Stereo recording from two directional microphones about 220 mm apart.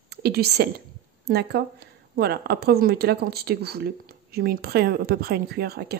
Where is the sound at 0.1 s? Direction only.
45° right (ahead or behind).